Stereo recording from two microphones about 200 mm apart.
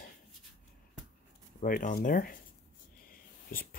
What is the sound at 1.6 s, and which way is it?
Speech, 45° left (ahead or behind).